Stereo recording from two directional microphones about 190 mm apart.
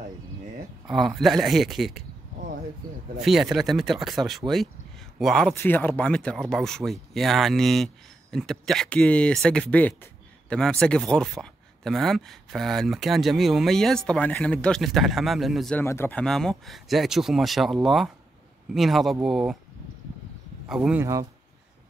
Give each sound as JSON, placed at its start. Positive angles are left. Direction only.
{"t": 0.8, "sound": "speech", "side_deg": 0}
{"t": 3.2, "sound": "speech", "side_deg": 0}
{"t": 15.8, "sound": "speech", "side_deg": 10}
{"t": 20.6, "sound": "speech", "side_deg": -5}
{"t": 21.0, "sound": "speech", "side_deg": -15}